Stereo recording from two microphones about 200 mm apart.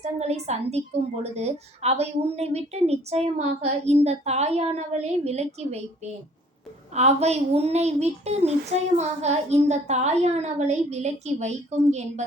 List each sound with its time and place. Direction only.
0.2 s a woman's voice: 35° right (ahead or behind)
6.9 s a woman's voice: 35° right (ahead or behind)